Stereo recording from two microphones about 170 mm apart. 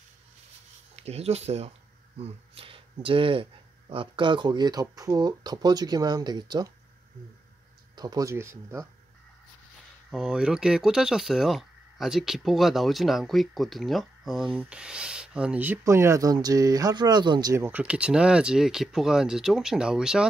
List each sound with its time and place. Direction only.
0.9 s speech: 40° right (ahead or behind)
7.9 s speech: 25° right (ahead or behind)
10.1 s speech: 5° right (ahead or behind)